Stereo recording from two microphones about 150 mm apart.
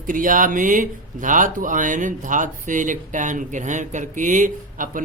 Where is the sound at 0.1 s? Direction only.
65° right (ahead or behind).